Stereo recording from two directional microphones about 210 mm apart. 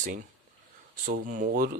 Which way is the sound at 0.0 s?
40° right (ahead or behind).